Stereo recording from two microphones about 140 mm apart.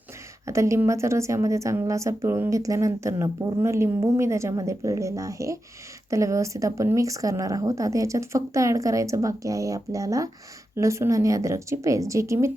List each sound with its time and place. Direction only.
0.4 s a woman's voice: 20° right (ahead or behind)